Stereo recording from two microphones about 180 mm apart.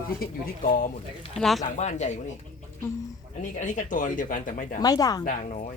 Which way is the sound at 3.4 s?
45° left (ahead or behind).